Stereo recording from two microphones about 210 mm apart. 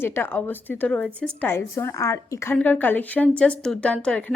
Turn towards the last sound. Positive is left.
turn(degrees=5)  # may be behind; listen again after turning